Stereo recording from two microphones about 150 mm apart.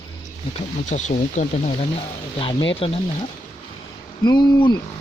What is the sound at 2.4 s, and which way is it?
Speech, 35° left (ahead or behind).